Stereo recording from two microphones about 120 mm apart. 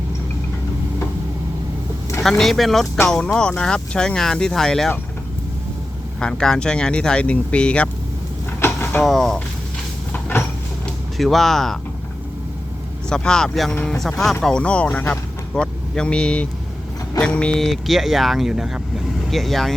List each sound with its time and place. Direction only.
2.4 s speech: centre (ahead or behind)
6.1 s speech: 5° left (ahead or behind)
8.6 s vehicle: 15° left (ahead or behind)
9.0 s speech: centre (ahead or behind)
10.1 s cupboard open or close: 10° left (ahead or behind)
11.2 s speech: centre (ahead or behind)
13.1 s speech: 5° left (ahead or behind)